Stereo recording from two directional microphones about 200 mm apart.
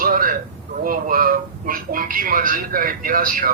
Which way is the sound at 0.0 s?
45° right (ahead or behind).